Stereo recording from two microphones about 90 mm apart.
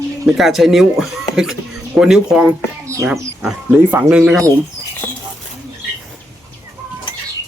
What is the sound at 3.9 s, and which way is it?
Speech, 15° right (ahead or behind).